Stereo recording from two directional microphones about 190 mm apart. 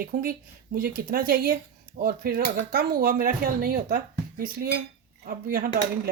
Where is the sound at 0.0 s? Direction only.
50° right (ahead or behind).